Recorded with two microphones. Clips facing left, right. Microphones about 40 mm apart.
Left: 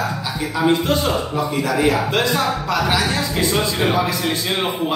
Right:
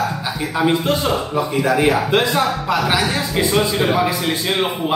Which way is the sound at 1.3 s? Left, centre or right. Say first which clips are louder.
Right 3 dB; right.